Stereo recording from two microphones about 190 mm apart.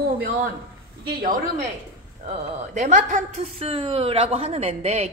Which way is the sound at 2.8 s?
40° right (ahead or behind).